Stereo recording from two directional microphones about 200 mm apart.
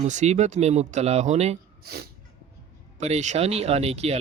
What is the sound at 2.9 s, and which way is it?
Speech, 35° right (ahead or behind).